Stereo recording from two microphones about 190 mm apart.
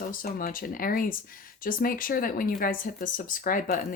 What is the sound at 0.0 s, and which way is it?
Speech, 50° left (ahead or behind).